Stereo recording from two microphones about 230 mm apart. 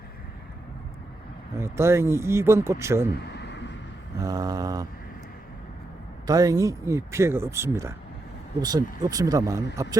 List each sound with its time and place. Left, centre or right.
1.5 s speech: centre
3.3 s vehicle: left
4.2 s speech: centre
6.2 s speech: centre